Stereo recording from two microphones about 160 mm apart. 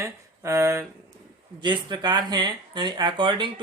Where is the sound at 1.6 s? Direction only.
30° right (ahead or behind).